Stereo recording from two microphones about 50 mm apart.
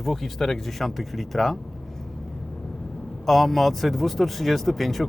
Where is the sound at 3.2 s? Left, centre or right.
Centre.